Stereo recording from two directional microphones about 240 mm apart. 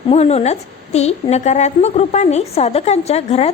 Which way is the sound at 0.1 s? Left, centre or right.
Left.